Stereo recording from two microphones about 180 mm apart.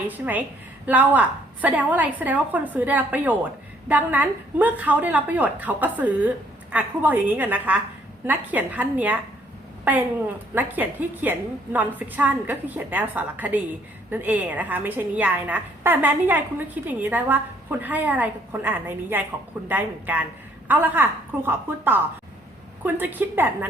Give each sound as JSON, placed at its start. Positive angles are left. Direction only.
{"t": 0.9, "sound": "a woman's voice", "side_deg": -10}